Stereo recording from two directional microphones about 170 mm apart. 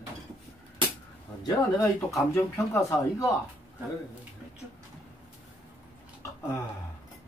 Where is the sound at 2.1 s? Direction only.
15° left (ahead or behind).